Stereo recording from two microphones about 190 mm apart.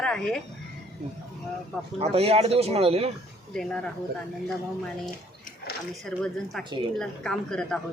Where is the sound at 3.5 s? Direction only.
5° left (ahead or behind).